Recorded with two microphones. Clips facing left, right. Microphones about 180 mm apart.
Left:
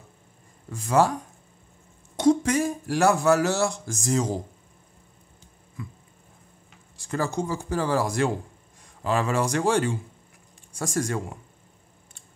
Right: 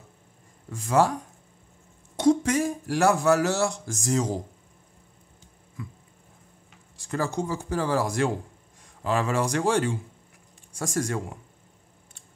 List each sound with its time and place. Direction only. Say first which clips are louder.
0.7 s speech: left 1 dB; 40° left (ahead or behind)
2.1 s speech: left 1 dB; 40° left (ahead or behind)
7.1 s speech: left 1 dB; 35° left (ahead or behind)